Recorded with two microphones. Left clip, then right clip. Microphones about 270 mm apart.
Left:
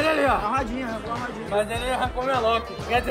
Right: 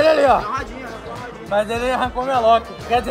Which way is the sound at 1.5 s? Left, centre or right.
Right.